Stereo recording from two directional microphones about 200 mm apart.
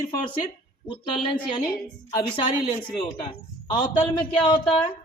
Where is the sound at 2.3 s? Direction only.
25° left (ahead or behind).